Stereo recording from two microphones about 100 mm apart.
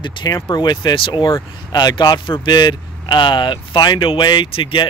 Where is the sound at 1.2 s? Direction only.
40° left (ahead or behind); by 4.9 s 60° left (ahead or behind).